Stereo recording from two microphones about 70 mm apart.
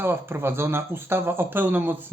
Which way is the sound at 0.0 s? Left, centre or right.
Right.